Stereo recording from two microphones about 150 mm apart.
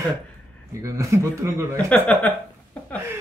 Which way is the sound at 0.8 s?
20° right (ahead or behind).